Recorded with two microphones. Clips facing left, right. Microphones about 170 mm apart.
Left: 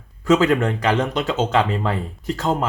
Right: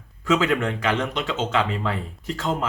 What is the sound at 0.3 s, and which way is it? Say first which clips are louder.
Speech: left 5 dB; 40° left (ahead or behind).